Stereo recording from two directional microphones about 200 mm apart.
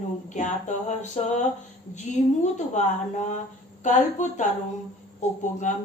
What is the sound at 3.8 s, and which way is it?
A woman's voice, 35° left (ahead or behind).